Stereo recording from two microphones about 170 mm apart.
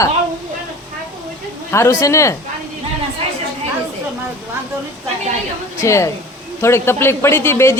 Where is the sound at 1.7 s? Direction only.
15° left (ahead or behind).